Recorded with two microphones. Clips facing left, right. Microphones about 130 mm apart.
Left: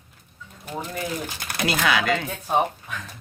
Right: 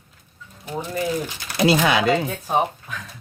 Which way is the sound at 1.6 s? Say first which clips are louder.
Right 5 dB; 25° right (ahead or behind).